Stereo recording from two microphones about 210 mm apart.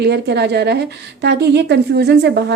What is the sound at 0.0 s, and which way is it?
A woman's voice, 55° right (ahead or behind).